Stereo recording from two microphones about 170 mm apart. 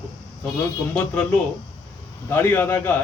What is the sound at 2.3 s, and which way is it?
Speech, 15° left (ahead or behind).